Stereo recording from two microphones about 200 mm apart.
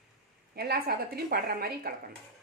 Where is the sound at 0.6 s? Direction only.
50° right (ahead or behind).